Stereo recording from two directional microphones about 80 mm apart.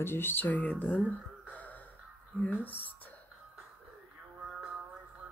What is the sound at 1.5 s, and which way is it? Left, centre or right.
Gasp, centre.